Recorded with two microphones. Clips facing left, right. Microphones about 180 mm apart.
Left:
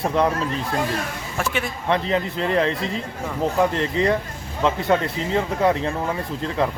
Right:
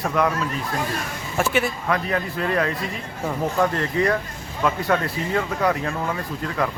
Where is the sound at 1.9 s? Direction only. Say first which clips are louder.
Left 2 dB; 25° left (ahead or behind).